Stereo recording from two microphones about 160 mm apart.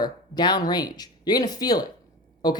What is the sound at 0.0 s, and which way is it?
Speech, 25° left (ahead or behind).